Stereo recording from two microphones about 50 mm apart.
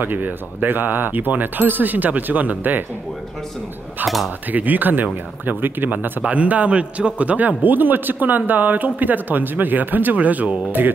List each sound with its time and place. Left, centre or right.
0.0 s a man's voice: right
4.0 s speech: centre
4.5 s a man's voice: right
6.2 s a man's voice: right